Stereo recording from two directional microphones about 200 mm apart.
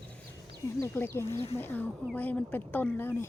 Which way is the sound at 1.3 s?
30° left (ahead or behind).